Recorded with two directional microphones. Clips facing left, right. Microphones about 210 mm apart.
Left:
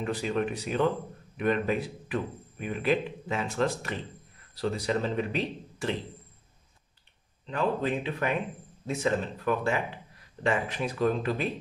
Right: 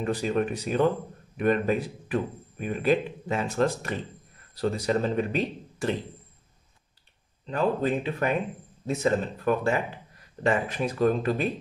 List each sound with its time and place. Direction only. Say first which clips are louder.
0.0 s a man's voice: right 3 dB; 45° right (ahead or behind)
7.4 s a man's voice: right 3 dB; 40° right (ahead or behind)